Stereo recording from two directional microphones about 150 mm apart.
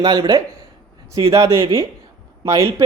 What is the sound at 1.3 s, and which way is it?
Speech, 20° right (ahead or behind).